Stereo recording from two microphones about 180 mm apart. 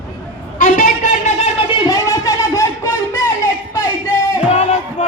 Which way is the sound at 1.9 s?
20° left (ahead or behind).